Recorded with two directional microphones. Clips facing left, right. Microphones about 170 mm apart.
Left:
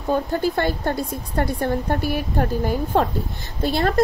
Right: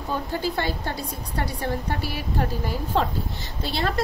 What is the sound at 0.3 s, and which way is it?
A woman's voice, 55° left (ahead or behind).